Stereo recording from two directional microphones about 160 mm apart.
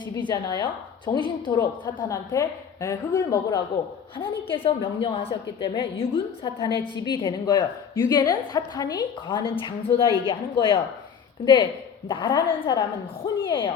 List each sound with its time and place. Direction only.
0.0 s a woman's voice: 30° left (ahead or behind)
4.2 s a woman's voice: 35° left (ahead or behind)
12.0 s a woman's voice: 30° left (ahead or behind)